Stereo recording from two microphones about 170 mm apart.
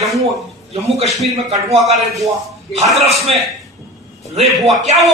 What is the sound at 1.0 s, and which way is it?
A man's voice, centre (ahead or behind).